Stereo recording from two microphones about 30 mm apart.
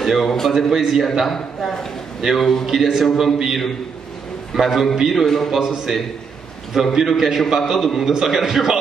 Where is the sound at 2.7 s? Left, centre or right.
Centre.